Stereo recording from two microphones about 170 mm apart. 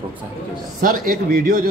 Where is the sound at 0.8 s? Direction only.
60° right (ahead or behind).